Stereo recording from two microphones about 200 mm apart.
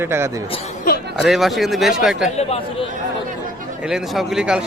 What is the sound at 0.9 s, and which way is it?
Speech, 45° left (ahead or behind).